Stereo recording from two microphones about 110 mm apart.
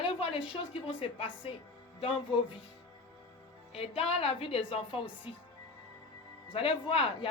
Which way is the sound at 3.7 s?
60° left (ahead or behind).